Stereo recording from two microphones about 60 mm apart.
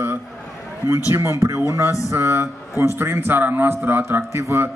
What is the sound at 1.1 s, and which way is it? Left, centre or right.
A man's voice, right.